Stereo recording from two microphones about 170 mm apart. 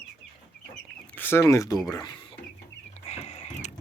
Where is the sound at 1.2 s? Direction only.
15° left (ahead or behind).